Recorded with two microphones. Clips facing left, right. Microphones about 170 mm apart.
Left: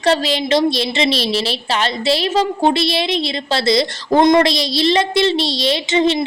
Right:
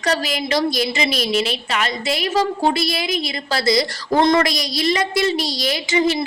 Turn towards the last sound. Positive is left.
turn(degrees=25)  # may be behind; listen again after turning